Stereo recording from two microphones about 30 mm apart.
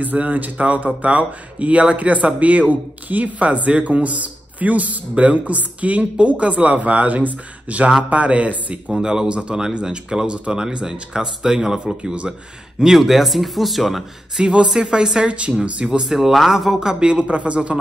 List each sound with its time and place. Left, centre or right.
0.3 s speech: right
1.0 s speech: right
8.9 s speech: right
12.8 s speech: centre
14.4 s speech: right
15.2 s speech: right
16.1 s speech: centre
17.0 s speech: right
17.3 s speech: right